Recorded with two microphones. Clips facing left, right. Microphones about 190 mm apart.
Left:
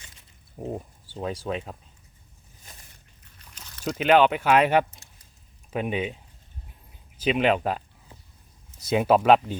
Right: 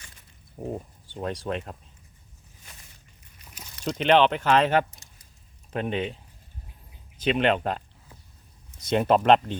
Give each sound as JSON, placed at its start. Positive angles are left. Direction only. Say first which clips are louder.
{"t": 0.7, "sound": "speech", "louder": "even", "side_deg": 5}
{"t": 3.3, "sound": "a sound", "louder": "right 2 dB", "side_deg": -10}
{"t": 3.8, "sound": "speech", "louder": "left 1 dB", "side_deg": 5}
{"t": 7.2, "sound": "speech", "louder": "left 1 dB", "side_deg": 5}
{"t": 8.8, "sound": "speech", "louder": "left 1 dB", "side_deg": 5}